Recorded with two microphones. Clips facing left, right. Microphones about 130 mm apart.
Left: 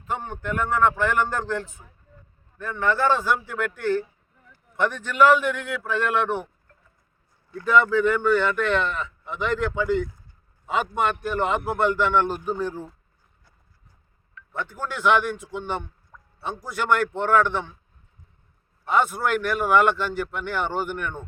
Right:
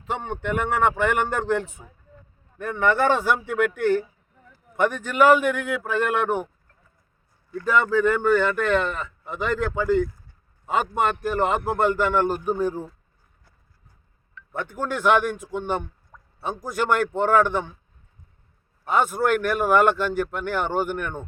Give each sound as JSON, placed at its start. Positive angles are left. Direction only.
{"t": 0.0, "sound": "a man's voice", "side_deg": -80}
{"t": 5.0, "sound": "speech", "side_deg": -45}
{"t": 7.6, "sound": "speech", "side_deg": -40}
{"t": 14.7, "sound": "speech", "side_deg": -50}
{"t": 19.1, "sound": "speech", "side_deg": -50}